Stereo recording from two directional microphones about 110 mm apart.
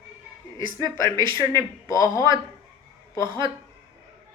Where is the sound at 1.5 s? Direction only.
30° left (ahead or behind).